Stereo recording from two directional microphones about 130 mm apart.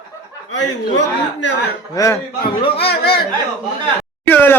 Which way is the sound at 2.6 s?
50° left (ahead or behind).